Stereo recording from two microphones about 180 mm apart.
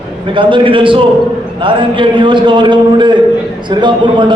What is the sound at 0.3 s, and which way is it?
A man's voice, 30° right (ahead or behind).